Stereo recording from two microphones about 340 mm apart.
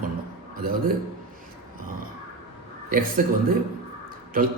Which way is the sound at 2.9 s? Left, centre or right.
Right.